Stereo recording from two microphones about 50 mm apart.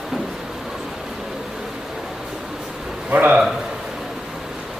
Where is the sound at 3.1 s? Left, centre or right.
Right.